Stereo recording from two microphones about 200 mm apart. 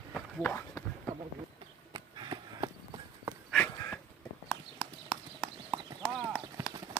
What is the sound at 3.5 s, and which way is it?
Dog, 5° left (ahead or behind).